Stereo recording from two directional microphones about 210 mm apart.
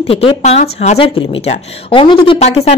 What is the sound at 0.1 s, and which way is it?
Speech, 25° left (ahead or behind).